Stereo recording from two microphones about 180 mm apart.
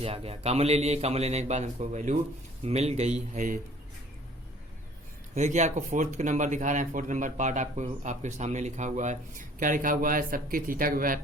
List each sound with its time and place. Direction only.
0.0 s a man's voice: 35° right (ahead or behind)
5.3 s speech: 40° right (ahead or behind)